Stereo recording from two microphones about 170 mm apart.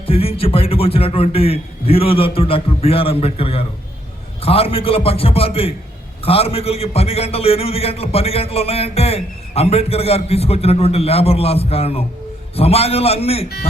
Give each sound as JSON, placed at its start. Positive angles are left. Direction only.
{"t": 0.0, "sound": "a man's voice", "side_deg": 35}